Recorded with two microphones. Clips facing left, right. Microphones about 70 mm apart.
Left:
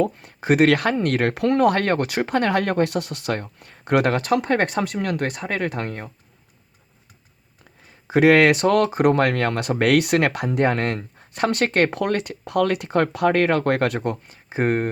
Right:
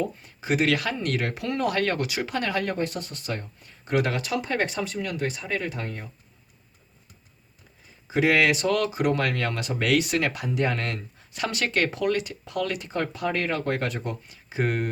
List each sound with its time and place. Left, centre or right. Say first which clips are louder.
0.0 s speech: left 7 dB; left
8.0 s speech: left 7 dB; left